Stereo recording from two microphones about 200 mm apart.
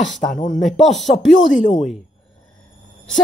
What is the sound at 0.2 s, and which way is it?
Speech, 35° left (ahead or behind).